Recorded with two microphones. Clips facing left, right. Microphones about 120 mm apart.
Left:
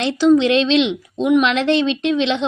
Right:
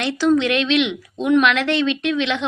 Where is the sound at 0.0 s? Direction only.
20° left (ahead or behind).